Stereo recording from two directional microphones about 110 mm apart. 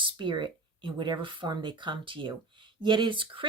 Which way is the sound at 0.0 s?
50° right (ahead or behind).